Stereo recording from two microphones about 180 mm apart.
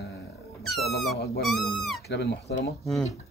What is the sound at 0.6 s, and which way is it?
Squeak, centre (ahead or behind).